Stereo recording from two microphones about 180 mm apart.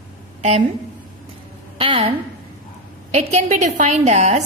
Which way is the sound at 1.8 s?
30° right (ahead or behind).